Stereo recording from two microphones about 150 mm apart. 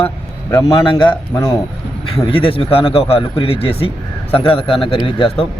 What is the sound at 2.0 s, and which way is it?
Speech, 35° left (ahead or behind).